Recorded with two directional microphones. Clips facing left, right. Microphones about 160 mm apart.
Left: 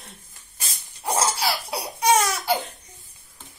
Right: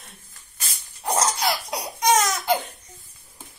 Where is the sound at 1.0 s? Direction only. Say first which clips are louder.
Even; 5° left (ahead or behind).